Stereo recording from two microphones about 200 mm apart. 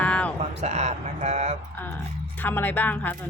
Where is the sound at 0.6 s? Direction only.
35° right (ahead or behind).